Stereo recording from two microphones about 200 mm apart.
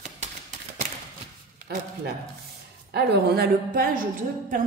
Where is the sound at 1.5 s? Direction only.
50° right (ahead or behind).